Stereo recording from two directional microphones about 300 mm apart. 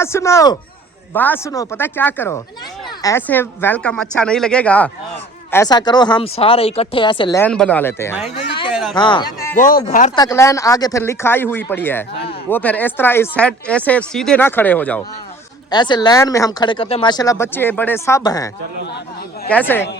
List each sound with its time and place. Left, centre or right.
0.0 s speech: centre
8.7 s a sound: centre
9.0 s a man's voice: centre
9.6 s speech: left
10.2 s speech: centre